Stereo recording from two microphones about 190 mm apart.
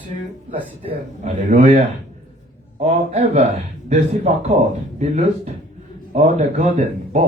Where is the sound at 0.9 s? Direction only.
40° right (ahead or behind).